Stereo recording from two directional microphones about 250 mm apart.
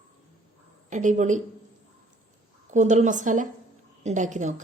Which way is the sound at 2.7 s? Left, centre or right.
Right.